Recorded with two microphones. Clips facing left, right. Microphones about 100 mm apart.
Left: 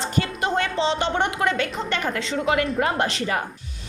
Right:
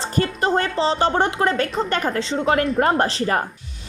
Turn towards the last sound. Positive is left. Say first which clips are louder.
# right 4 dB
turn(degrees=-40)  # may be behind; listen again after turning